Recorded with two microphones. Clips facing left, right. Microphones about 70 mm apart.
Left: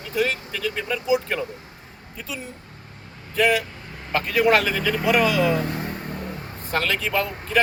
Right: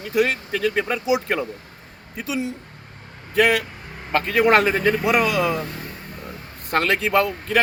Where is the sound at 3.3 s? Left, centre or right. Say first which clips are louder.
Right 2 dB; right.